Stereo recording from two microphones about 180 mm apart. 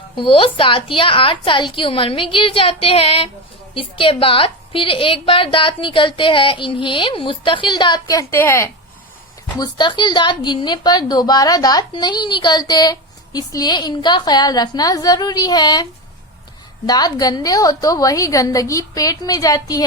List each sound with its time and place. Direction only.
0.2 s a woman's voice: 30° left (ahead or behind); by 8.7 s 15° left (ahead or behind)
9.6 s a woman's voice: 25° left (ahead or behind)